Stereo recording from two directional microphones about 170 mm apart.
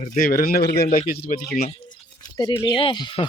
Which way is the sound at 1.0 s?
60° left (ahead or behind).